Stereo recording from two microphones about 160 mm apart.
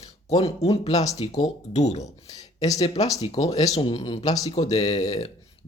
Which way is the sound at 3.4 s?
40° left (ahead or behind).